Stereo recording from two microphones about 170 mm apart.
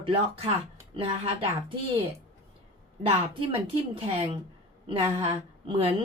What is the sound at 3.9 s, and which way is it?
Speech, 35° right (ahead or behind).